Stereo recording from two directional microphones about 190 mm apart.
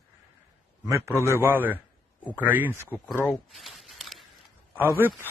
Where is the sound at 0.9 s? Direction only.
15° right (ahead or behind).